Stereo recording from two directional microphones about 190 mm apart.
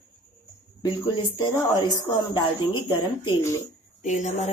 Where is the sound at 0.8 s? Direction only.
20° left (ahead or behind).